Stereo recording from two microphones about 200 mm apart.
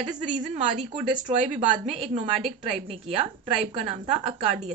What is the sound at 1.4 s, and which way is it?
A woman's voice, 35° right (ahead or behind).